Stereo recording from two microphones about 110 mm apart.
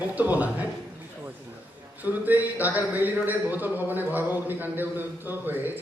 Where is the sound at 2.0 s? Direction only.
15° right (ahead or behind).